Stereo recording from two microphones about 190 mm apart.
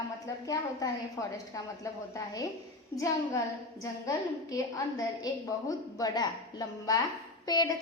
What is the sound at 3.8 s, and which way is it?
A woman's voice, 15° left (ahead or behind).